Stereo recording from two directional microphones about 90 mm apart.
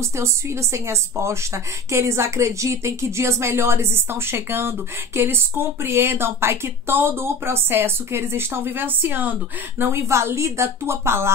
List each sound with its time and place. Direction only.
0.0 s speech: 30° right (ahead or behind)
9.8 s a woman's voice: 30° right (ahead or behind)